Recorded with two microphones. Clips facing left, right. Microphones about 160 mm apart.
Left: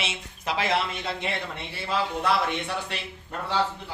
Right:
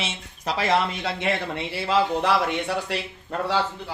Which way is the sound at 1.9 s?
90° right.